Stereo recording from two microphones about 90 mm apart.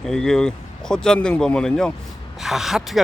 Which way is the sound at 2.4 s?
5° right (ahead or behind).